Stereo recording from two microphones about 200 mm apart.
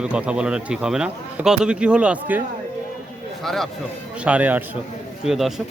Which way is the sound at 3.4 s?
Centre (ahead or behind).